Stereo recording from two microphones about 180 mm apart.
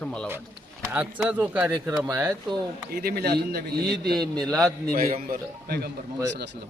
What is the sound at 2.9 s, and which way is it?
Speech, 60° right (ahead or behind).